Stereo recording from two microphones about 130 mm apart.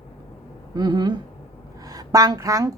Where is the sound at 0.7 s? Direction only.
35° right (ahead or behind).